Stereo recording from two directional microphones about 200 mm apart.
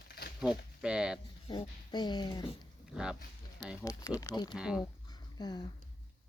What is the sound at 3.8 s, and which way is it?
Speech, 20° left (ahead or behind).